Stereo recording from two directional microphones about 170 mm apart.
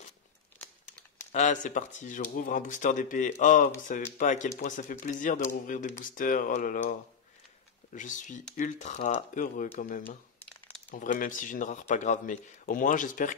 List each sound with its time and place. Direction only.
1.3 s speech: 45° left (ahead or behind)